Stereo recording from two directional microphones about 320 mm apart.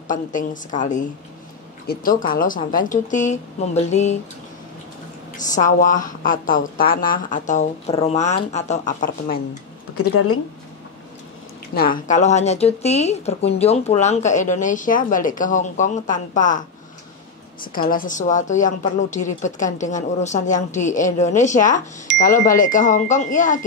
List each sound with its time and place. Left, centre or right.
0.1 s a woman's voice: left
5.6 s a woman's voice: left
9.9 s speech: left
11.7 s a woman's voice: left
17.7 s a woman's voice: left